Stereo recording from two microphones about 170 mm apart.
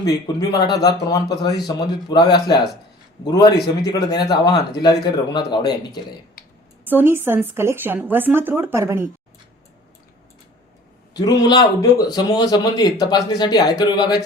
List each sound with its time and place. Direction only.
0.0 s a man's voice: 20° left (ahead or behind)
6.8 s a woman's voice: 10° right (ahead or behind)
11.1 s a man's voice: 25° left (ahead or behind)